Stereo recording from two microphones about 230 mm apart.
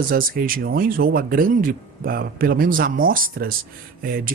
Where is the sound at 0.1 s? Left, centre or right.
Right.